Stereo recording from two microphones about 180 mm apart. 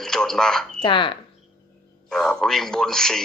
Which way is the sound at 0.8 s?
25° left (ahead or behind).